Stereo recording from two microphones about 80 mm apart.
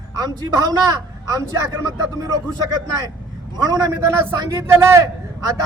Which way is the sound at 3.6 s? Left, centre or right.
Right.